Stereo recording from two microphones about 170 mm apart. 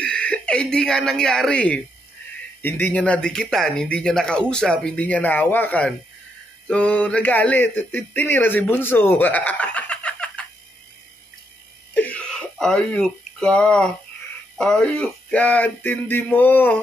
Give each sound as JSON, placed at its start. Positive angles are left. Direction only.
{"t": 0.0, "sound": "speech", "side_deg": 5}
{"t": 11.9, "sound": "a sound", "side_deg": 10}
{"t": 14.6, "sound": "speech", "side_deg": 5}